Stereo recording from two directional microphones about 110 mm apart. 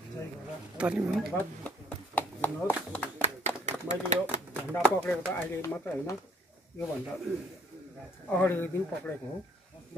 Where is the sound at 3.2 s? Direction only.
90° right.